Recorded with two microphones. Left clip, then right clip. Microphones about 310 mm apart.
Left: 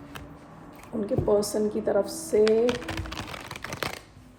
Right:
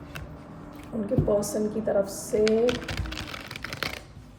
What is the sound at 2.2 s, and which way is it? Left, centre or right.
Computer keyboard, centre.